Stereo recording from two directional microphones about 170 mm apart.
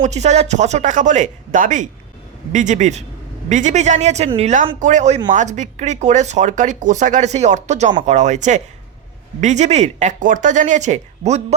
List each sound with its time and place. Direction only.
0.0 s speech: 40° right (ahead or behind)